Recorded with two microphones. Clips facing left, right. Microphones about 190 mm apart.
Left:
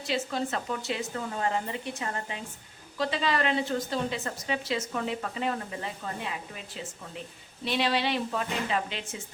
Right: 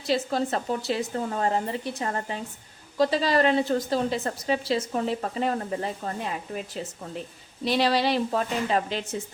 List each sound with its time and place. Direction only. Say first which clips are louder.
0.0 s a woman's voice: right 5 dB; 40° right (ahead or behind)